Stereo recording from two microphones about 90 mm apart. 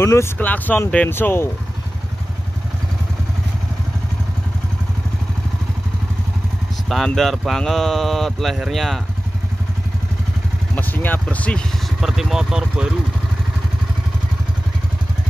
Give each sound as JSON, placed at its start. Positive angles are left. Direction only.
{"t": 0.0, "sound": "speech", "side_deg": 30}
{"t": 0.4, "sound": "speech", "side_deg": 20}
{"t": 7.2, "sound": "speech", "side_deg": 0}
{"t": 10.7, "sound": "vehicle", "side_deg": 20}
{"t": 11.2, "sound": "speech", "side_deg": 10}
{"t": 12.0, "sound": "speech", "side_deg": -5}